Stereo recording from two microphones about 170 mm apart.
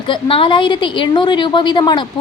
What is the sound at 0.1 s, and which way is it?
A woman's voice, 30° left (ahead or behind).